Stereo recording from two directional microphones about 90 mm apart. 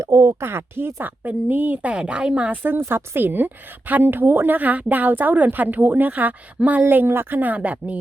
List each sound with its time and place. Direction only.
0.0 s speech: 35° right (ahead or behind)
0.4 s a woman's voice: 25° right (ahead or behind)